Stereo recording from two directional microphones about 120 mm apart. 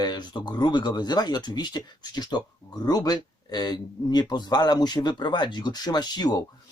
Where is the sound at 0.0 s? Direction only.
35° left (ahead or behind).